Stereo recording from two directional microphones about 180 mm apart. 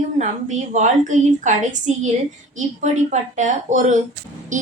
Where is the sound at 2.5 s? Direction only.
40° right (ahead or behind).